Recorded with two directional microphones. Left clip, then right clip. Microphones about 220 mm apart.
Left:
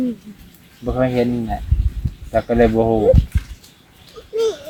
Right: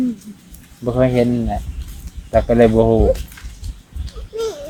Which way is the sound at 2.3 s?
50° right (ahead or behind).